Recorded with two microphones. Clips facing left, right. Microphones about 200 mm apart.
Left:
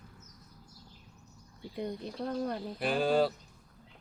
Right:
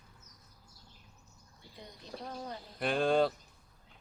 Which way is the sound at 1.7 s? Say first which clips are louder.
Left 11 dB; 60° left (ahead or behind).